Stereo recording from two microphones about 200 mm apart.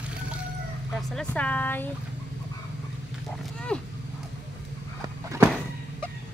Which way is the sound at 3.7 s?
5° left (ahead or behind).